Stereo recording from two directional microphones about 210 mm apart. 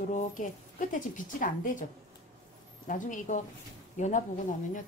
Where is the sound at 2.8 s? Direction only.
40° left (ahead or behind).